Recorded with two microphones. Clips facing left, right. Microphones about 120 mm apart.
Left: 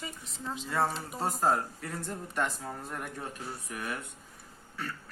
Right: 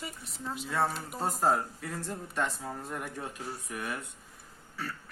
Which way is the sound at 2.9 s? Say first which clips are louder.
Right 1 dB; 10° right (ahead or behind).